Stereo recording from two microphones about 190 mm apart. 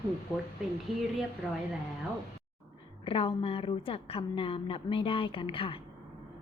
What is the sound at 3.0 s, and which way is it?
A woman's voice, 30° left (ahead or behind).